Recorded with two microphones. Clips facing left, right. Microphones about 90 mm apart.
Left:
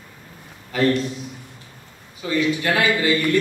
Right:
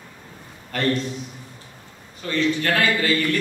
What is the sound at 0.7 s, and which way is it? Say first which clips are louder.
Speech: left 5 dB; 5° left (ahead or behind).